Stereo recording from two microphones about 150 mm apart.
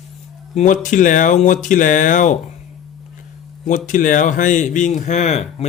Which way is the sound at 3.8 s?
60° left (ahead or behind).